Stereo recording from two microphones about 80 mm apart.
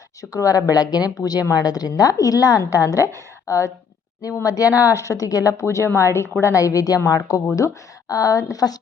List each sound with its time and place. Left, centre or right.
0.2 s a woman's voice: left